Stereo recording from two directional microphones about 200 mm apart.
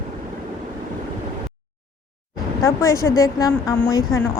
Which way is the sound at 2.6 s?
15° left (ahead or behind).